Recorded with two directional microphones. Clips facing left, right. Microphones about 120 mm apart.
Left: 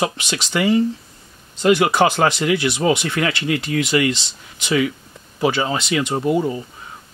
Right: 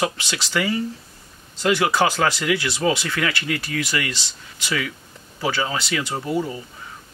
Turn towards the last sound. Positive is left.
turn(degrees=20)  # may be behind; listen again after turning